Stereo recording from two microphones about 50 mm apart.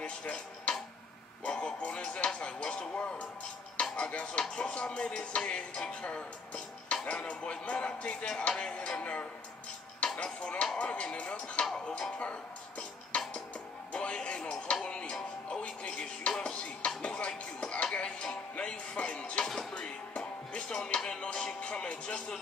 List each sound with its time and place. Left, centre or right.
0.0 s tick-tock: left
1.4 s music: left
3.9 s a sound: left
4.3 s music: centre
13.9 s speech: centre
15.6 s music: left
19.4 s music: centre
19.7 s music: centre